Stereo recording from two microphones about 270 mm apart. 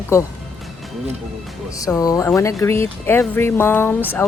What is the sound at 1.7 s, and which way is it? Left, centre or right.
Speech, centre.